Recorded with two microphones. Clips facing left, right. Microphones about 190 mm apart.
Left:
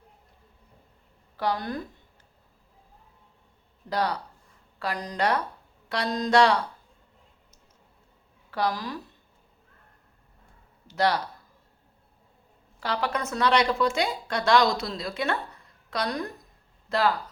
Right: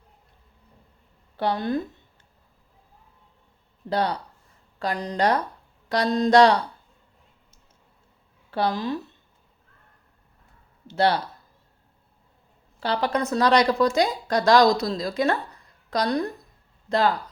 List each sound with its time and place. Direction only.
1.4 s a woman's voice: 25° right (ahead or behind)
3.8 s a woman's voice: 30° right (ahead or behind)
8.4 s a woman's voice: 30° right (ahead or behind)
10.8 s a woman's voice: 30° right (ahead or behind)
12.8 s a woman's voice: 30° right (ahead or behind)